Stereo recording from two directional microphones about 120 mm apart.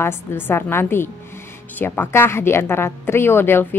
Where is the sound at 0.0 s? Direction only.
20° left (ahead or behind).